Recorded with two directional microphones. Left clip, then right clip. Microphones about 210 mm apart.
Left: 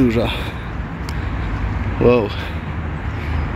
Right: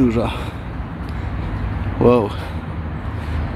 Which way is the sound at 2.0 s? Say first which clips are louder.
Even; 10° right (ahead or behind).